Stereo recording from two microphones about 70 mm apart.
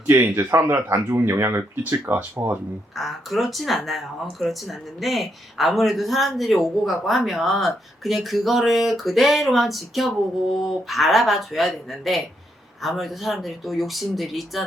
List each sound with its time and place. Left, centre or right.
0.1 s speech: right
2.9 s speech: centre